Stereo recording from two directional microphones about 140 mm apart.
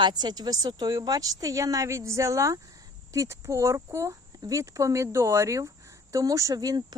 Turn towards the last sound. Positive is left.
turn(degrees=-25)  # may be behind; listen again after turning